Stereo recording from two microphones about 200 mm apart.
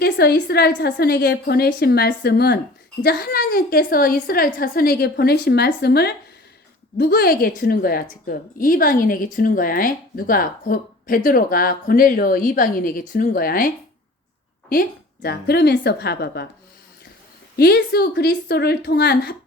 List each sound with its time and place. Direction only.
0.0 s speech: 55° left (ahead or behind)
14.7 s speech: 50° left (ahead or behind)
17.6 s a woman's voice: 55° left (ahead or behind)